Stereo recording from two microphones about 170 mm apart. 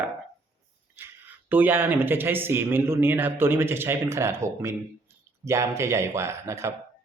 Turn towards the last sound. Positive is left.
turn(degrees=-15)  # may be behind; listen again after turning